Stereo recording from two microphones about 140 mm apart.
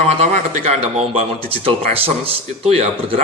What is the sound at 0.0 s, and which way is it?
Speech, 45° right (ahead or behind).